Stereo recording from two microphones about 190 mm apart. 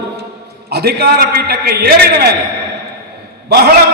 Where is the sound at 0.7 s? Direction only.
55° right (ahead or behind).